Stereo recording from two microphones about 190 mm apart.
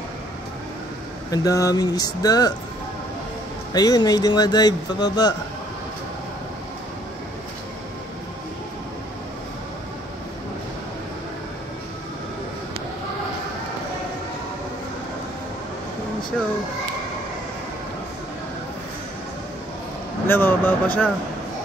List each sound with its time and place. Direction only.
1.3 s speech: 15° left (ahead or behind)
3.7 s speech: 20° left (ahead or behind)
20.2 s speech: 10° left (ahead or behind)